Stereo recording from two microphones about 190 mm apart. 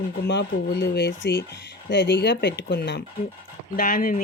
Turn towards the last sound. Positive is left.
turn(degrees=50)  # may be behind; listen again after turning